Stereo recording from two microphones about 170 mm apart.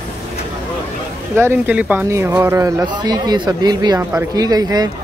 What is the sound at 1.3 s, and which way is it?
Speech, 15° right (ahead or behind).